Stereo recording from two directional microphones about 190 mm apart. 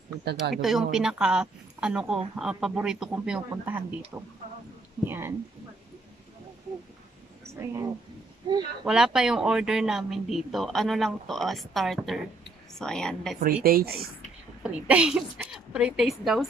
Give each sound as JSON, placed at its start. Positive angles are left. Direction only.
{"t": 0.2, "sound": "speech", "side_deg": -60}
{"t": 0.6, "sound": "speech", "side_deg": 0}
{"t": 8.5, "sound": "speech", "side_deg": -25}
{"t": 8.8, "sound": "speech", "side_deg": -5}
{"t": 13.4, "sound": "speech", "side_deg": -50}
{"t": 14.6, "sound": "speech", "side_deg": -5}